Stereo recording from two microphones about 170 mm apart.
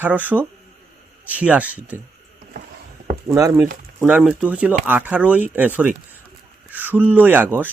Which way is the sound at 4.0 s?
10° right (ahead or behind).